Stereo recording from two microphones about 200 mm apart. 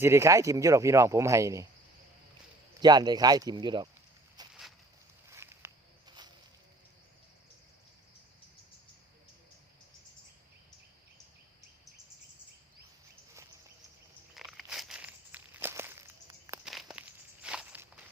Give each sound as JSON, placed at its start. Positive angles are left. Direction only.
{"t": 0.0, "sound": "speech", "side_deg": -15}
{"t": 2.8, "sound": "speech", "side_deg": -20}
{"t": 4.4, "sound": "a sound", "side_deg": -20}
{"t": 5.3, "sound": "walk", "side_deg": -15}
{"t": 14.3, "sound": "walk", "side_deg": 0}
{"t": 16.6, "sound": "walk", "side_deg": -5}